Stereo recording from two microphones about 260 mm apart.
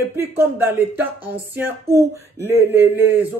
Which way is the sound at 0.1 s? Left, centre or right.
Centre.